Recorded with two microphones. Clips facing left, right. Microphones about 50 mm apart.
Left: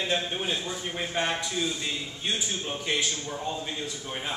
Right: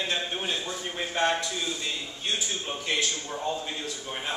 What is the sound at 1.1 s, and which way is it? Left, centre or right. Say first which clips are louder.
Speech: right 3 dB; centre.